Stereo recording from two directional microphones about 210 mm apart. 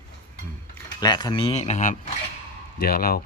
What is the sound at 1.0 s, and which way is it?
Speech, 20° left (ahead or behind).